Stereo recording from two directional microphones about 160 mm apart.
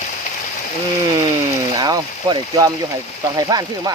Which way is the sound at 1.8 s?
25° right (ahead or behind).